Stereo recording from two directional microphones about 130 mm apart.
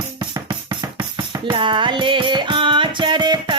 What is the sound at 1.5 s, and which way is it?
Music, 40° right (ahead or behind).